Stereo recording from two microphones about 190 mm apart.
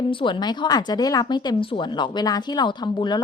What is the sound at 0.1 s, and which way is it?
Speech, 25° left (ahead or behind).